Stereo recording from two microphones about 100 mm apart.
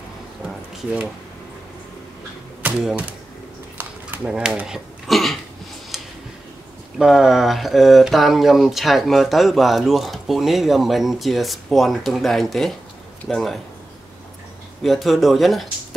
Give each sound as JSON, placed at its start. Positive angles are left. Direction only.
{"t": 3.7, "sound": "a sound", "side_deg": -20}
{"t": 4.3, "sound": "speech", "side_deg": -5}
{"t": 5.9, "sound": "tick", "side_deg": 0}
{"t": 7.0, "sound": "speech", "side_deg": -5}
{"t": 14.8, "sound": "speech", "side_deg": 0}